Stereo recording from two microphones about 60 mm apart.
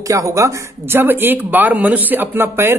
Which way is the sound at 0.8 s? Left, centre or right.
Right.